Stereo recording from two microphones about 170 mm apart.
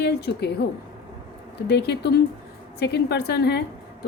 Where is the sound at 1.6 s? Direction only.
75° left (ahead or behind).